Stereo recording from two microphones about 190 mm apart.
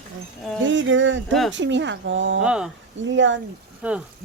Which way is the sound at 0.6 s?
75° right (ahead or behind).